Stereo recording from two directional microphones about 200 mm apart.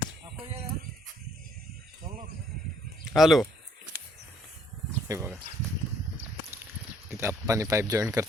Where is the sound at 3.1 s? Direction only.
Centre (ahead or behind).